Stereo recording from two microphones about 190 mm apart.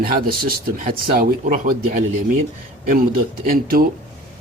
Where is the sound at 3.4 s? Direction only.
50° right (ahead or behind).